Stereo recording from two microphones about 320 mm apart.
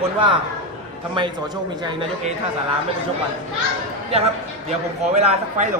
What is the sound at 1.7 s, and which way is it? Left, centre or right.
Speech, centre.